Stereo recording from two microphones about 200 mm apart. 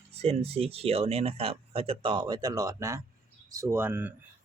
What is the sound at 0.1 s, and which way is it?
Speech, 30° right (ahead or behind).